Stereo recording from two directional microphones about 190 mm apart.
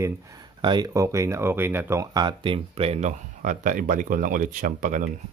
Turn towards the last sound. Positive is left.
turn(degrees=-45)  # may be behind; listen again after turning